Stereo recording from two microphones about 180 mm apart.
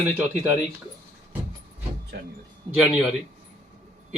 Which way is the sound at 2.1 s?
65° right (ahead or behind).